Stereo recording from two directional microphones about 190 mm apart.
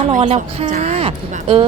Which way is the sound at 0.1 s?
35° right (ahead or behind).